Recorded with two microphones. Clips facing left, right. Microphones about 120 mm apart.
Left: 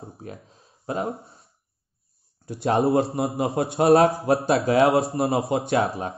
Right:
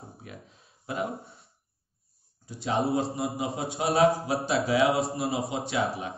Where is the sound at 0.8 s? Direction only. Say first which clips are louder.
Left 4 dB; 35° left (ahead or behind).